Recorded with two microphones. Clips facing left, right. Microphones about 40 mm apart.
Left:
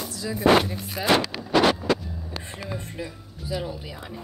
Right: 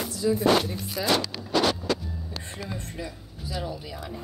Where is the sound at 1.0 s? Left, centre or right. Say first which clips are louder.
Left 2 dB; left.